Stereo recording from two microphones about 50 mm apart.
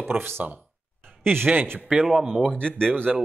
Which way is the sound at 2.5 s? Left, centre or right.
Centre.